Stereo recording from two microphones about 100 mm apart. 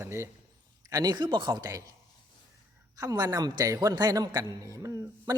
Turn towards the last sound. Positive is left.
turn(degrees=-35)  # may be behind; listen again after turning